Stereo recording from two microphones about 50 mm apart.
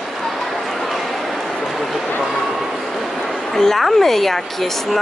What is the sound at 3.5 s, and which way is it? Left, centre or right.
A woman's voice, centre.